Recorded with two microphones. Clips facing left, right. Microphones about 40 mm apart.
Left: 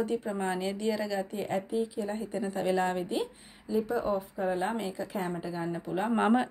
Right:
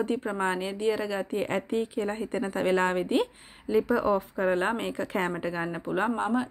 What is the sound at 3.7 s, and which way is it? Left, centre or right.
Speech, right.